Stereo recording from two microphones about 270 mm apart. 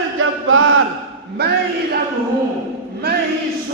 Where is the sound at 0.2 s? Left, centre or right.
Right.